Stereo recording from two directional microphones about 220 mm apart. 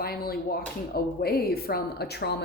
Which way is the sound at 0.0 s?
45° left (ahead or behind).